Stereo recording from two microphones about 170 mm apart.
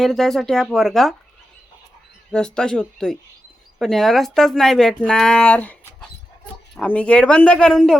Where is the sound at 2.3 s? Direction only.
5° left (ahead or behind).